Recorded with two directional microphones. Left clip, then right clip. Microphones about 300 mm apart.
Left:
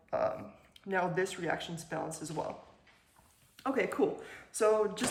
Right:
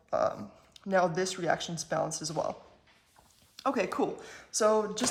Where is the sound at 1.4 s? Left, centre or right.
Centre.